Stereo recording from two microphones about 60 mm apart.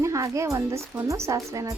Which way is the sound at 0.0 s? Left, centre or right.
Right.